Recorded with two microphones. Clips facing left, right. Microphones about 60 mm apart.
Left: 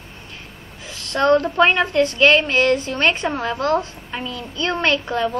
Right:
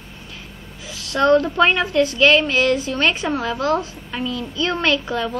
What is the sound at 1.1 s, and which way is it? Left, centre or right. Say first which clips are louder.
Speech: even; centre.